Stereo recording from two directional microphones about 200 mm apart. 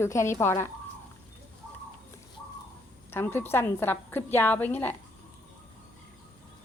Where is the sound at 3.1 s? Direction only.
10° left (ahead or behind).